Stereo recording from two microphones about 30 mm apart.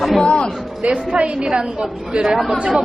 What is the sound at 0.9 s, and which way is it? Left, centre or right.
Speech, right.